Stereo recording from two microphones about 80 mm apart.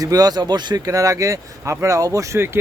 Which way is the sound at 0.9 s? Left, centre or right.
Right.